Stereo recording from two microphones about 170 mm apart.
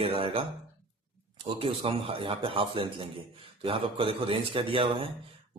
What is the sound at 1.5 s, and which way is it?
A man's voice, 30° right (ahead or behind).